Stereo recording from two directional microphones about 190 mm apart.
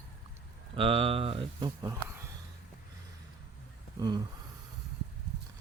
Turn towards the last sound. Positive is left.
turn(degrees=-20)  # may be behind; listen again after turning